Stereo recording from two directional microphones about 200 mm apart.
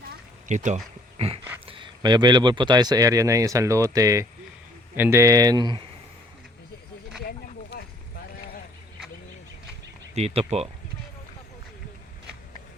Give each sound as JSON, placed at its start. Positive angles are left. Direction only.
{"t": 0.4, "sound": "speech", "side_deg": -35}
{"t": 1.6, "sound": "speech", "side_deg": -25}
{"t": 7.3, "sound": "a sound", "side_deg": 55}
{"t": 10.2, "sound": "speech", "side_deg": -30}